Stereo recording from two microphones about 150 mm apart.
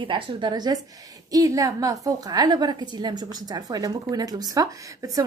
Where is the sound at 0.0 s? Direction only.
30° right (ahead or behind).